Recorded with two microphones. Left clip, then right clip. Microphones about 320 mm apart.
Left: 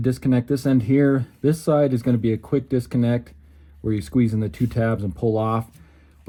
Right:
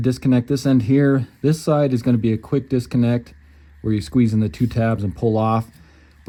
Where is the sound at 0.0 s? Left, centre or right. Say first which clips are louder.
Right 2 dB; right.